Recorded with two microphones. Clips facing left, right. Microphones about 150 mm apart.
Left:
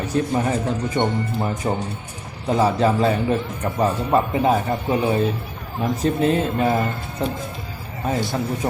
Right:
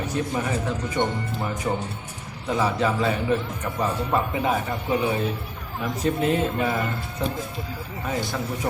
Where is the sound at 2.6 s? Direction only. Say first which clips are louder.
Left 5 dB; 40° left (ahead or behind).